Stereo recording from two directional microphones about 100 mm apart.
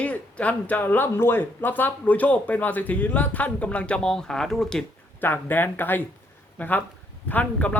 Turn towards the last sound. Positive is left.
turn(degrees=15)  # may be behind; listen again after turning